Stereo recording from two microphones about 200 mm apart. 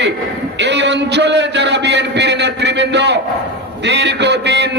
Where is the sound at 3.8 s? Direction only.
60° right (ahead or behind).